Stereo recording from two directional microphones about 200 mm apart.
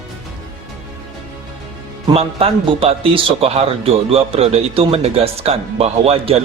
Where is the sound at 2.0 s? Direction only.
30° right (ahead or behind).